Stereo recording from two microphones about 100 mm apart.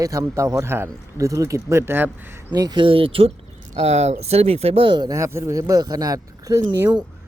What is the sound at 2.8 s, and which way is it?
Speech, 65° right (ahead or behind).